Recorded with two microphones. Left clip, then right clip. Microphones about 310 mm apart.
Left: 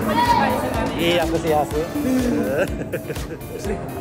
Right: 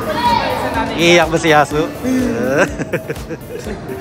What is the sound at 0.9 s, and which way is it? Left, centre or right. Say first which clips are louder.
Speech: right 10 dB; centre.